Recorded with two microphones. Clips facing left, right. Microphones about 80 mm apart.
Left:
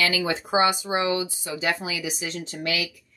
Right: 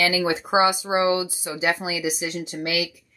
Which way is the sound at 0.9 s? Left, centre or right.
Right.